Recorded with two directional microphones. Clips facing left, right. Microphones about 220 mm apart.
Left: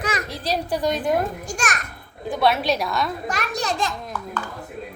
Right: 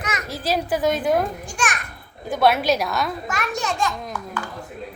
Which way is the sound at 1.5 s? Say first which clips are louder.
Even; 40° left (ahead or behind).